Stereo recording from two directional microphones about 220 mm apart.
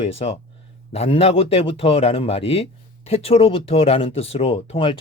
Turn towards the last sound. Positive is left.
turn(degrees=25)  # may be behind; listen again after turning